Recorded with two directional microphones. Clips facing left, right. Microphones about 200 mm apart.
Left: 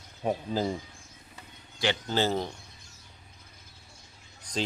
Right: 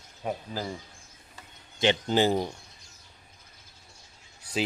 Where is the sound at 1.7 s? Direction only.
20° right (ahead or behind).